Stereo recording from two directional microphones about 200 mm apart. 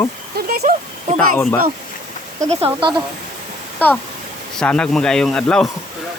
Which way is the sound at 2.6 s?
25° right (ahead or behind).